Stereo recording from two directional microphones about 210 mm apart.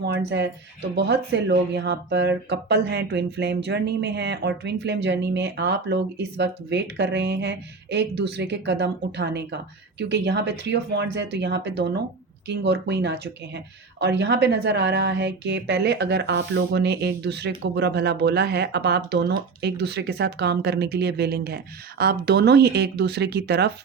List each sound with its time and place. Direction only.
0.3 s a woman's voice: 55° right (ahead or behind)